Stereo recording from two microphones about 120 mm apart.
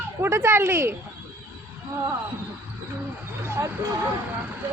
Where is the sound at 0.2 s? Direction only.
20° right (ahead or behind).